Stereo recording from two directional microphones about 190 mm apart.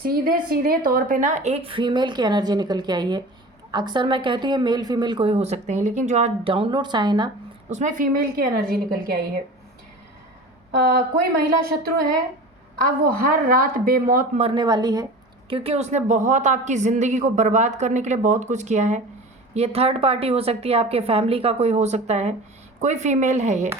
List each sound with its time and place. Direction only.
0.0 s a woman's voice: 55° right (ahead or behind); by 7.3 s 20° right (ahead or behind)
7.7 s a woman's voice: 40° right (ahead or behind)
11.4 s a woman's voice: 50° right (ahead or behind)
14.3 s a woman's voice: 25° right (ahead or behind)